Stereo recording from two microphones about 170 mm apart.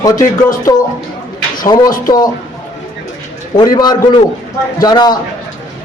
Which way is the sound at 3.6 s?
25° left (ahead or behind).